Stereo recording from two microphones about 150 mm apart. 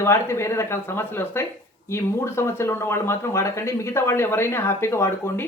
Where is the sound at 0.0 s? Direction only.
15° left (ahead or behind).